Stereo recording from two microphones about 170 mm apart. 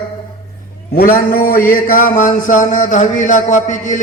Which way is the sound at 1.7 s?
55° left (ahead or behind).